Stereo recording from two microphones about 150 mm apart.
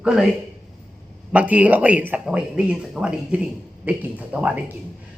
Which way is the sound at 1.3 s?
10° right (ahead or behind).